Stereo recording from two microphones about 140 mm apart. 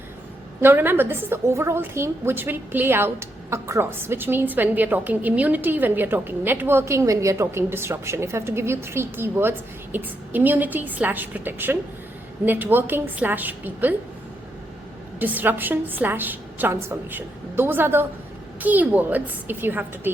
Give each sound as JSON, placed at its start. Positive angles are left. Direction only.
{"t": 0.6, "sound": "a woman's voice", "side_deg": -15}
{"t": 15.2, "sound": "a woman's voice", "side_deg": -10}